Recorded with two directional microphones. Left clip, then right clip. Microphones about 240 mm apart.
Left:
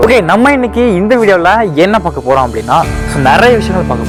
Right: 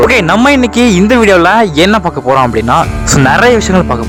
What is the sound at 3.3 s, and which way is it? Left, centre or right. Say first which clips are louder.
Speech: left 1 dB; centre.